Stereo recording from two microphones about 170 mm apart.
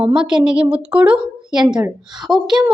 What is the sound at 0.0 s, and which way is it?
A woman's voice, 5° right (ahead or behind).